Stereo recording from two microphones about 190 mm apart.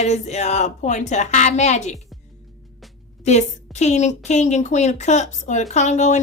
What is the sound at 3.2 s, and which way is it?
A woman's voice, 35° left (ahead or behind).